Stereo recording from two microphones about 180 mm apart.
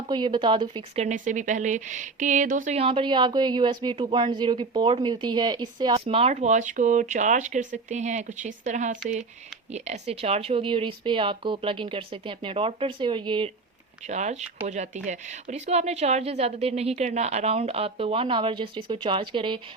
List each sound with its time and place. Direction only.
0.1 s speech: 25° right (ahead or behind)
1.0 s speech: 45° right (ahead or behind); by 13.5 s 25° right (ahead or behind)
14.1 s speech: 40° right (ahead or behind)